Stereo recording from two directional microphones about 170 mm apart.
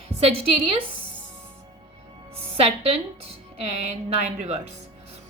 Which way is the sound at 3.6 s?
40° right (ahead or behind).